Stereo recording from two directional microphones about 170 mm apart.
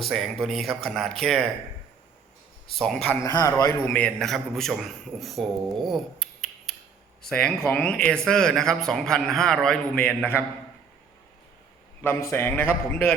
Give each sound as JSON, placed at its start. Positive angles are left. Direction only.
{"t": 0.0, "sound": "a man's voice", "side_deg": 0}
{"t": 2.6, "sound": "a man's voice", "side_deg": 0}
{"t": 3.2, "sound": "a man's voice", "side_deg": 20}
{"t": 3.8, "sound": "a man's voice", "side_deg": 10}
{"t": 12.0, "sound": "a man's voice", "side_deg": 15}